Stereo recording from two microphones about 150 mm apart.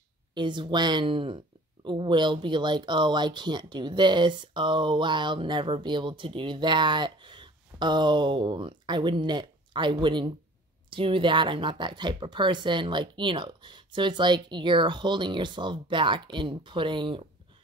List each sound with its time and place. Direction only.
0.3 s speech: 30° right (ahead or behind)